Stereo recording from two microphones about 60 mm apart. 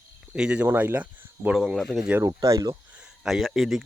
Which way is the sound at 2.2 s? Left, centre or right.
Right.